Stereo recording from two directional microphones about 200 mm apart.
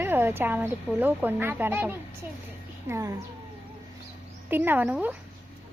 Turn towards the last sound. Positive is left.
turn(degrees=-5)  # may be behind; listen again after turning